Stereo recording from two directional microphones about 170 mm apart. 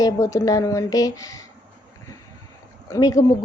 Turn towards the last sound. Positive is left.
turn(degrees=20)  # may be behind; listen again after turning